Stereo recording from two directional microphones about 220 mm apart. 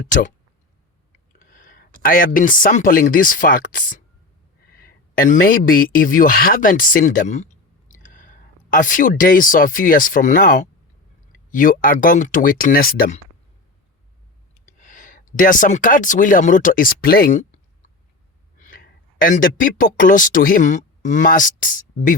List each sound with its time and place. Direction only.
1.4 s a sound: 35° left (ahead or behind)
2.0 s speech: 40° left (ahead or behind)
14.7 s speech: 35° left (ahead or behind)
18.6 s speech: 40° left (ahead or behind)